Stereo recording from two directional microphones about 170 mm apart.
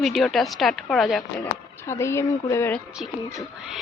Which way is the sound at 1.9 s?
15° left (ahead or behind).